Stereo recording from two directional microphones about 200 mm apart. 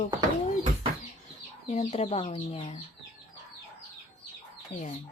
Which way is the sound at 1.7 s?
35° left (ahead or behind).